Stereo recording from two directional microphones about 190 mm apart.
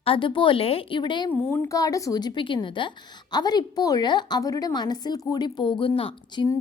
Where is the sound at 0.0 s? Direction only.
30° left (ahead or behind).